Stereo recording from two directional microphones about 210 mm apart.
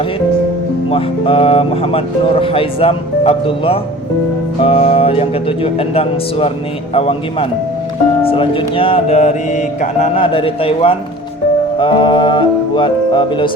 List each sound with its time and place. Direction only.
0.9 s speech: 25° left (ahead or behind)